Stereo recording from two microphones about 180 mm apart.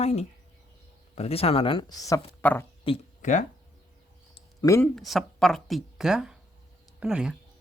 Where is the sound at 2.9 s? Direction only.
30° left (ahead or behind).